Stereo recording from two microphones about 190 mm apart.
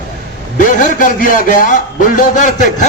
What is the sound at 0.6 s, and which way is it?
A man's voice, 45° left (ahead or behind).